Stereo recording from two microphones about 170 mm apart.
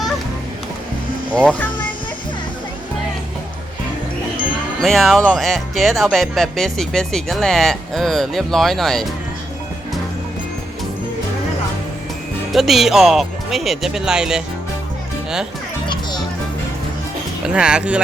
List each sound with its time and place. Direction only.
1.3 s speech: 10° left (ahead or behind)
4.8 s speech: centre (ahead or behind)
12.5 s speech: centre (ahead or behind)
15.9 s a child's voice: 25° left (ahead or behind)
17.4 s speech: 5° right (ahead or behind)